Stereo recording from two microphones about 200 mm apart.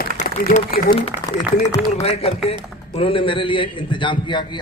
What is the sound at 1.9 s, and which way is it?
A man's voice, 30° left (ahead or behind).